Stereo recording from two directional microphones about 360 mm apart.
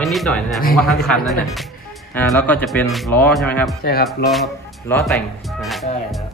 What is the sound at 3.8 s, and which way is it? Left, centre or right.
Speech, left.